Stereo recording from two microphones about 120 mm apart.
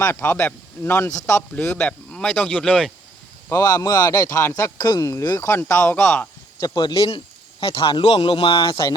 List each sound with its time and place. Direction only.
0.0 s speech: 20° left (ahead or behind)
3.5 s speech: 20° left (ahead or behind)
6.6 s speech: 35° left (ahead or behind)
7.6 s speech: 50° left (ahead or behind)